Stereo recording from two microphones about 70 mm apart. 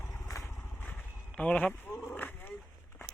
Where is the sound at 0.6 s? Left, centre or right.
Left.